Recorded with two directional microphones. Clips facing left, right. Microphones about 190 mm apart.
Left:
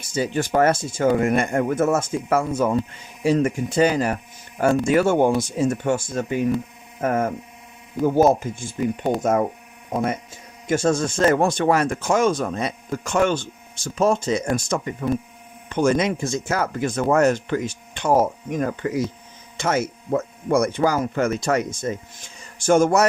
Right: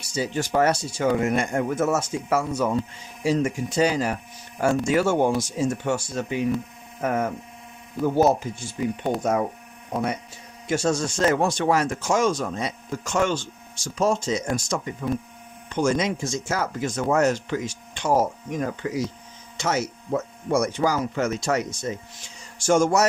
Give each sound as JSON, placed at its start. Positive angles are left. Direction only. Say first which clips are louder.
{"t": 0.0, "sound": "speech", "louder": "left 3 dB", "side_deg": 55}
{"t": 9.9, "sound": "speech", "louder": "left 3 dB", "side_deg": 50}